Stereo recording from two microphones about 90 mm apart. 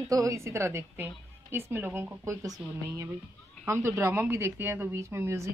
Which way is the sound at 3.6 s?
30° right (ahead or behind).